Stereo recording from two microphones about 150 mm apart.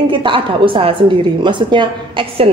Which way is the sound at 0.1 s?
35° right (ahead or behind).